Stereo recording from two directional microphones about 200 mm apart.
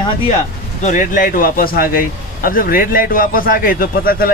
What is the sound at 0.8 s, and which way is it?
Speech, 40° left (ahead or behind).